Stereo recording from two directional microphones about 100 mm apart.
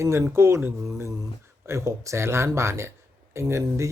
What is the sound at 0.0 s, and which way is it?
Speech, 25° right (ahead or behind).